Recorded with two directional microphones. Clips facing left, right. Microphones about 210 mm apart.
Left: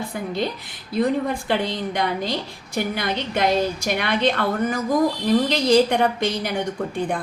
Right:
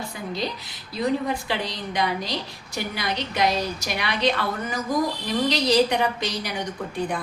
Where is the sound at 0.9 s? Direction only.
55° left (ahead or behind).